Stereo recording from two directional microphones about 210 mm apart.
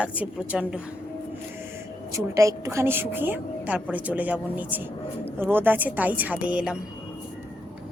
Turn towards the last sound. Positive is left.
turn(degrees=-5)  # may be behind; listen again after turning